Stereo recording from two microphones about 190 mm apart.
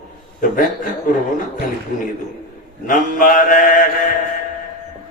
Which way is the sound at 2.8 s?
45° left (ahead or behind).